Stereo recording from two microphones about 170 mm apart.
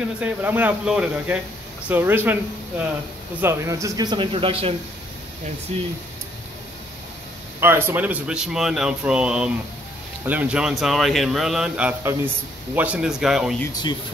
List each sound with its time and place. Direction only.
0.2 s speech: 10° right (ahead or behind)
3.3 s speech: 15° right (ahead or behind); by 4.7 s 35° right (ahead or behind)
7.6 s speech: 15° right (ahead or behind)